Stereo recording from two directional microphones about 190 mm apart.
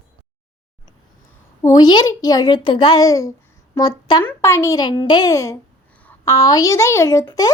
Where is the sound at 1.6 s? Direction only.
20° left (ahead or behind).